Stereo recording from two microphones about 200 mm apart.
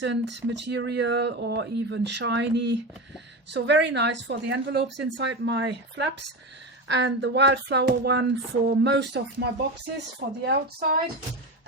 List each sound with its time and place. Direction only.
0.0 s speech: 60° right (ahead or behind)